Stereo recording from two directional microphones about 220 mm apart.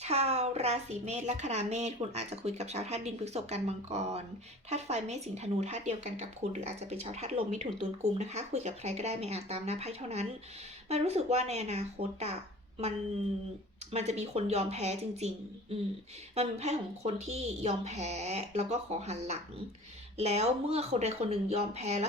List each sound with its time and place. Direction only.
0.0 s speech: 30° right (ahead or behind)
13.9 s speech: 30° right (ahead or behind)
16.3 s speech: 30° right (ahead or behind)